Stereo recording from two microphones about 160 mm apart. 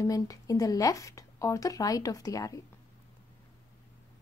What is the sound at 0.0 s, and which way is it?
A woman's voice, 20° left (ahead or behind).